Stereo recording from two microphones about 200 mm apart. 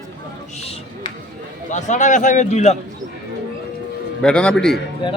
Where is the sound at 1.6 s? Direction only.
35° left (ahead or behind).